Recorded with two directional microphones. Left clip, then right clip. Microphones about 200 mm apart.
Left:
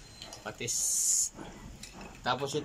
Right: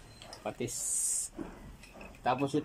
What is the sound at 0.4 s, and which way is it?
Speech, 25° right (ahead or behind).